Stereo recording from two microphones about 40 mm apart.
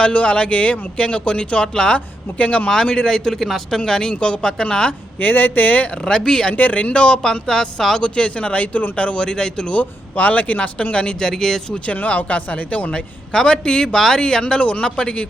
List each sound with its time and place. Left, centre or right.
0.0 s a man's voice: left
2.4 s speech: left
2.6 s a man's voice: centre
5.2 s speech: left
6.1 s a man's voice: centre
6.5 s speech: left
7.4 s speech: centre
7.9 s a man's voice: left
9.7 s speech: left
10.9 s speech: centre
11.9 s speech: left
12.9 s a man's voice: left